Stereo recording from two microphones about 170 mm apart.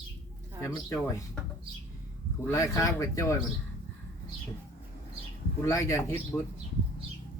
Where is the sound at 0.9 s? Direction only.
20° left (ahead or behind).